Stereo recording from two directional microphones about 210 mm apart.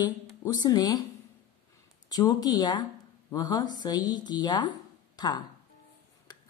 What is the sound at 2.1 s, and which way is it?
Speech, 20° left (ahead or behind).